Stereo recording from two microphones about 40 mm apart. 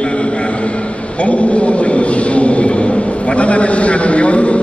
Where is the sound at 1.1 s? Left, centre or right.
Left.